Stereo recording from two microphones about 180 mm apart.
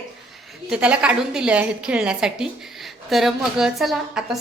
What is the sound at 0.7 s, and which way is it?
A woman's voice, 5° right (ahead or behind).